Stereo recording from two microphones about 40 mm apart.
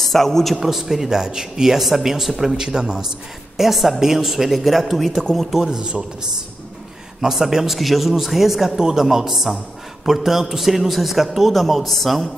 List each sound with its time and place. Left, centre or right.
0.0 s a man's voice: centre
0.6 s a man's voice: centre
5.7 s speech: centre
7.2 s a man's voice: centre